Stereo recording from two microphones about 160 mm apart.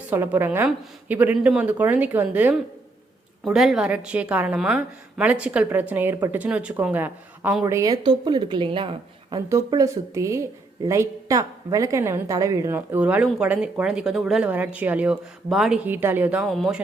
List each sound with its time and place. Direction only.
0.1 s a woman's voice: 10° right (ahead or behind); by 9.4 s 35° right (ahead or behind)
9.5 s a woman's voice: 20° right (ahead or behind); by 16.8 s centre (ahead or behind)